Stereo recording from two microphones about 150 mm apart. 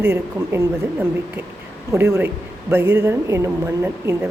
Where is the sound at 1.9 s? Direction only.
20° right (ahead or behind).